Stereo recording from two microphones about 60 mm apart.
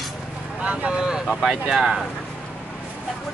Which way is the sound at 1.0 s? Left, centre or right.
Centre.